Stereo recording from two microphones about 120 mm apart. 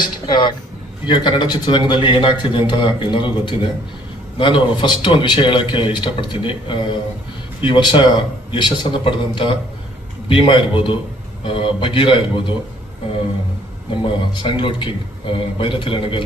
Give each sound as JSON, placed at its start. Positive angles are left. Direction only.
{"t": 0.0, "sound": "a sound", "side_deg": 40}
{"t": 1.0, "sound": "a man's voice", "side_deg": 40}
{"t": 14.0, "sound": "a man's voice", "side_deg": 45}